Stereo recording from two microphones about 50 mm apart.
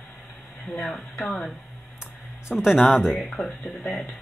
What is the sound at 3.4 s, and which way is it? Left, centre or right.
Speech, left.